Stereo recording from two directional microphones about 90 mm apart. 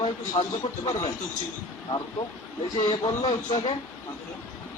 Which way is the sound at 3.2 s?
80° left.